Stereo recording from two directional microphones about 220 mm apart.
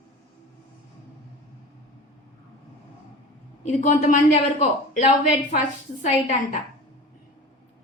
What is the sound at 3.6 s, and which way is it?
Speech, 35° left (ahead or behind).